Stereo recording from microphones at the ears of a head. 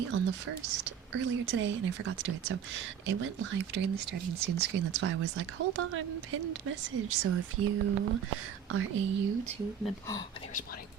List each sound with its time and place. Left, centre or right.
0.0 s a woman's voice: right